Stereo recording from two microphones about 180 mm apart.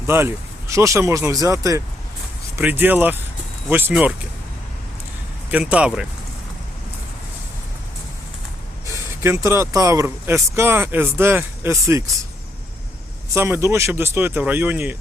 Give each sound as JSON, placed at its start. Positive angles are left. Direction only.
{"t": 0.1, "sound": "speech", "side_deg": -10}
{"t": 5.5, "sound": "speech", "side_deg": -5}
{"t": 8.9, "sound": "speech", "side_deg": -15}
{"t": 13.3, "sound": "speech", "side_deg": -15}